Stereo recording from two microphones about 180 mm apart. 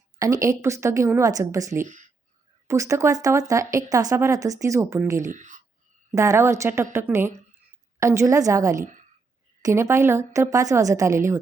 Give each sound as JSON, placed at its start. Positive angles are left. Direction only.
{"t": 0.2, "sound": "speech", "side_deg": -20}
{"t": 1.8, "sound": "speech", "side_deg": -45}
{"t": 2.6, "sound": "speech", "side_deg": -15}
{"t": 5.3, "sound": "speech", "side_deg": -45}
{"t": 6.1, "sound": "speech", "side_deg": -15}